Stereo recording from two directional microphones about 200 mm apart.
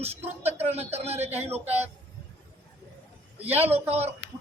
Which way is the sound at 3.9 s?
30° right (ahead or behind).